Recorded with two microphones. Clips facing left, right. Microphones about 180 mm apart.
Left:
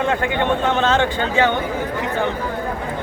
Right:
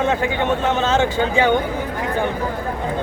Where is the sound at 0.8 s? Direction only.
10° right (ahead or behind).